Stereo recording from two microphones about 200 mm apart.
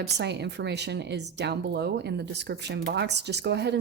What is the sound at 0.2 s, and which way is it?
A woman's voice, 60° right (ahead or behind).